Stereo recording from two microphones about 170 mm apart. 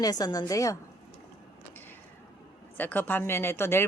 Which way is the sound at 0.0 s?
25° left (ahead or behind).